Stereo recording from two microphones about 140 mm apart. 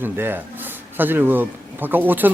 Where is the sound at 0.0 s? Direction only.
15° right (ahead or behind).